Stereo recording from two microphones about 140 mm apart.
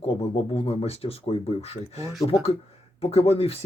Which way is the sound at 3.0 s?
45° left (ahead or behind).